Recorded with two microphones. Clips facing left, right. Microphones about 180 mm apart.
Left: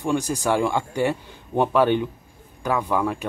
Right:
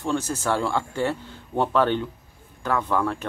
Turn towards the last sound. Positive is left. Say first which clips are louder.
# left 1 dB
turn(degrees=10)  # may be behind; listen again after turning